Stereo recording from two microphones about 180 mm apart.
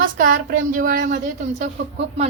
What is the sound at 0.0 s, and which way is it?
A woman's voice, 50° right (ahead or behind).